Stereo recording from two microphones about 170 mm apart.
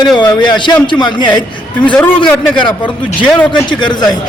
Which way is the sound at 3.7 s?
25° left (ahead or behind).